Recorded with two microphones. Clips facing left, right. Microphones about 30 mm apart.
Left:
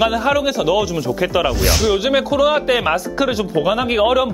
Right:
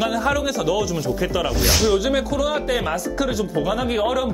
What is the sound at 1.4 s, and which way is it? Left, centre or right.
Speech, centre.